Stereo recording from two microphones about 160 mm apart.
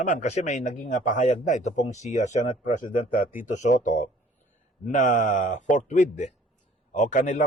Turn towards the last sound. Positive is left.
turn(degrees=50)  # may be behind; listen again after turning